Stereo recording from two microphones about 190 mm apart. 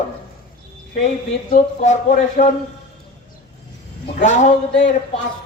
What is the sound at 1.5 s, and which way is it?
Speech, 40° left (ahead or behind).